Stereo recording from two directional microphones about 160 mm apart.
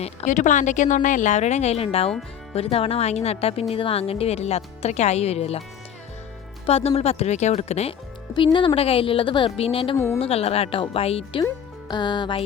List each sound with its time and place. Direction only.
0.3 s a woman's voice: 50° left (ahead or behind)
6.7 s speech: 40° left (ahead or behind)
8.3 s speech: 30° left (ahead or behind)
11.9 s music: 30° left (ahead or behind)